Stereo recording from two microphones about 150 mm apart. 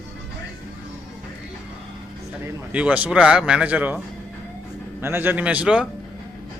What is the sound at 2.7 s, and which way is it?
Speech, 10° right (ahead or behind).